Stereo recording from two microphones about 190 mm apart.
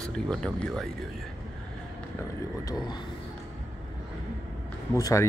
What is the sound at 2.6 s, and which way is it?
Speech, 20° left (ahead or behind).